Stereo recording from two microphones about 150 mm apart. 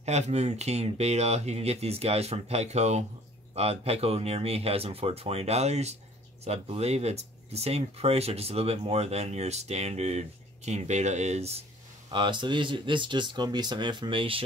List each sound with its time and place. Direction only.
0.0 s speech: 50° right (ahead or behind)
12.1 s speech: 30° right (ahead or behind)